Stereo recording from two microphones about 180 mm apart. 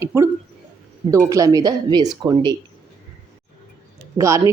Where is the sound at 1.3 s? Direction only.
20° right (ahead or behind).